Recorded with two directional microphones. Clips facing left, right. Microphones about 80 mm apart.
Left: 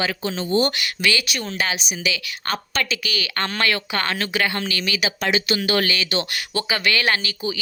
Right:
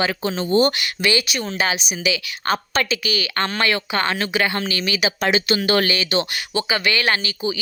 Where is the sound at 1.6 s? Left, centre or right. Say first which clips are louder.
Right 3 dB; centre.